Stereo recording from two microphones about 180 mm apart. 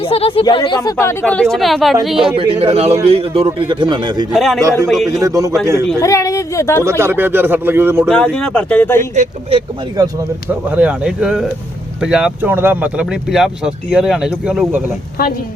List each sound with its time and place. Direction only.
0.0 s speech: 30° left (ahead or behind)
0.8 s speech: 15° left (ahead or behind)
2.2 s a man's voice: 30° right (ahead or behind)
4.3 s speech: centre (ahead or behind)
5.2 s speech: 15° right (ahead or behind)
6.0 s speech: 20° left (ahead or behind)
7.0 s speech: 10° right (ahead or behind)
8.0 s speech: 5° left (ahead or behind)
9.1 s speech: 35° right (ahead or behind)
10.7 s speech: 5° right (ahead or behind)
15.2 s a woman's voice: 55° left (ahead or behind)